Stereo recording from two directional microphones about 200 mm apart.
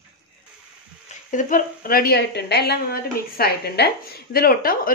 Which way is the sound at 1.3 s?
45° left (ahead or behind).